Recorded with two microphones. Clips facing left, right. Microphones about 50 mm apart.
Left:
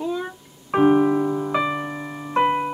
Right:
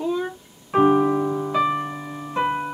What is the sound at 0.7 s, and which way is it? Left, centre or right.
Piano, centre.